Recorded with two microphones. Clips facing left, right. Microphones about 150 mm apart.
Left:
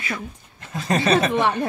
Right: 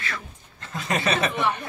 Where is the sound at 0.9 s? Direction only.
35° left (ahead or behind).